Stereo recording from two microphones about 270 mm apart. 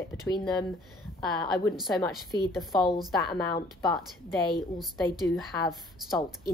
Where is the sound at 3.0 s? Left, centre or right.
Centre.